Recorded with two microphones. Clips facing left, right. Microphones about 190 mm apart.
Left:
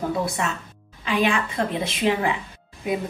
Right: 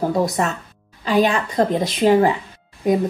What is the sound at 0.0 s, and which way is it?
A woman's voice, 40° right (ahead or behind).